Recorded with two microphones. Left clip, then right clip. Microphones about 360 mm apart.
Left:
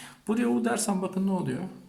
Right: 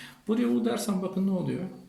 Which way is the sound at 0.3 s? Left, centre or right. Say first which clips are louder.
Even; centre.